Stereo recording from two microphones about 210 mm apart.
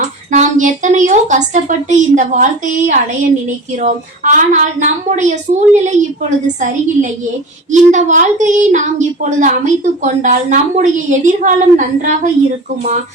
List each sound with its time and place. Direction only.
0.3 s a woman's voice: 35° right (ahead or behind)
7.7 s speech: 35° right (ahead or behind)